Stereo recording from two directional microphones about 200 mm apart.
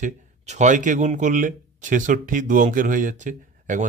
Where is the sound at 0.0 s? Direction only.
35° right (ahead or behind).